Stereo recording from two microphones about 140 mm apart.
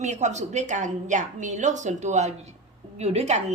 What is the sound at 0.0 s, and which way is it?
A woman's voice, 55° right (ahead or behind).